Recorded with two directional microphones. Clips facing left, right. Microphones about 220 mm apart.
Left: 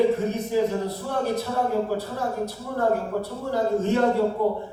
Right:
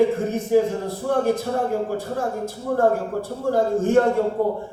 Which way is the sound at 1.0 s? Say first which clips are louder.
Right 8 dB; 50° right (ahead or behind).